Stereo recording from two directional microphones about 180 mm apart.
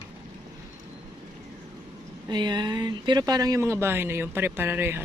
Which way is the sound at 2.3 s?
25° right (ahead or behind).